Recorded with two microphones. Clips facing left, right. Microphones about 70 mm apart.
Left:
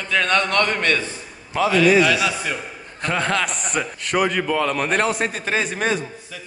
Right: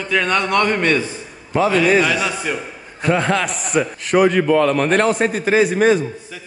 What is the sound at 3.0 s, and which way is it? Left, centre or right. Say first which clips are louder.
A man's voice: right 4 dB; centre.